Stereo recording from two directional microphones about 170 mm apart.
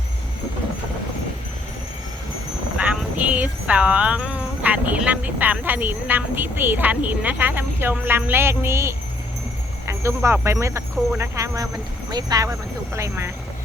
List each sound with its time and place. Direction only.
2.7 s speech: 10° right (ahead or behind)
9.8 s a sound: 15° right (ahead or behind)
10.2 s speech: 15° right (ahead or behind)